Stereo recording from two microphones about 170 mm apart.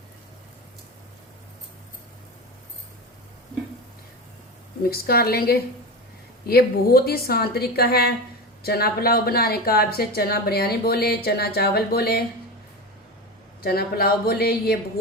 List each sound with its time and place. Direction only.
4.8 s speech: 65° left (ahead or behind)
13.6 s speech: 65° left (ahead or behind)